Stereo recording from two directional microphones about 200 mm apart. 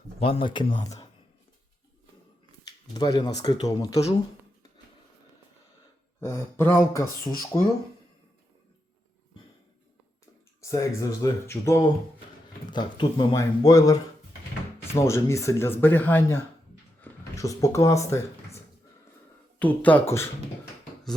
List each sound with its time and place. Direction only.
0.2 s speech: 25° left (ahead or behind)
2.6 s speech: 20° left (ahead or behind)
6.1 s speech: 15° left (ahead or behind)
10.6 s speech: 15° left (ahead or behind)
19.5 s speech: 10° left (ahead or behind)